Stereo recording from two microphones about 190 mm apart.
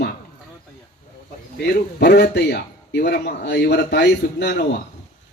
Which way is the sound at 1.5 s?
60° left (ahead or behind).